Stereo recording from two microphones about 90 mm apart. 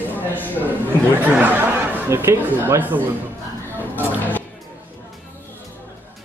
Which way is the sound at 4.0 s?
20° left (ahead or behind).